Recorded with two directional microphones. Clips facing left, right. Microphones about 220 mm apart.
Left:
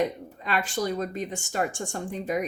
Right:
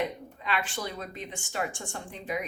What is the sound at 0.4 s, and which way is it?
Speech, 40° left (ahead or behind).